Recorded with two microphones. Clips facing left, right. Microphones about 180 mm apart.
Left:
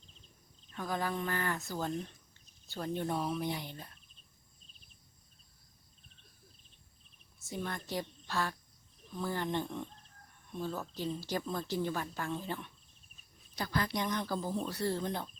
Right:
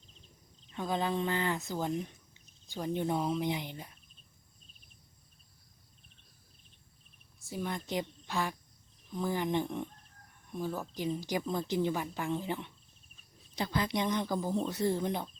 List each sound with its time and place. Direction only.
0.7 s a woman's voice: 20° right (ahead or behind)
7.6 s a woman's voice: 20° right (ahead or behind)